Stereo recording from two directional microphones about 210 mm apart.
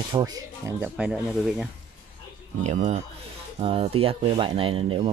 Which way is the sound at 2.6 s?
35° right (ahead or behind).